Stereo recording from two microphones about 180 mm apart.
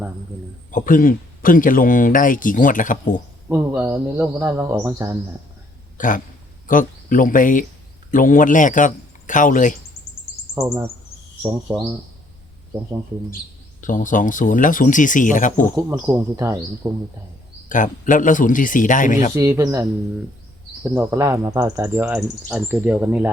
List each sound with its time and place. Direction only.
0.7 s a man's voice: 50° left (ahead or behind)
3.5 s speech: 15° right (ahead or behind)
6.0 s a man's voice: 45° left (ahead or behind)
11.7 s speech: 10° right (ahead or behind)
13.8 s a man's voice: 45° left (ahead or behind)
15.7 s speech: 15° right (ahead or behind)
17.7 s a man's voice: 45° left (ahead or behind)
19.3 s speech: 15° right (ahead or behind)